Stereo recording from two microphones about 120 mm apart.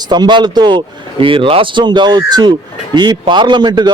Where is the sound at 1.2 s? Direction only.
50° right (ahead or behind).